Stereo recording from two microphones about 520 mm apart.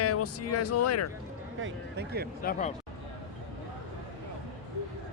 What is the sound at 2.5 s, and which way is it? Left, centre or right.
Speech, centre.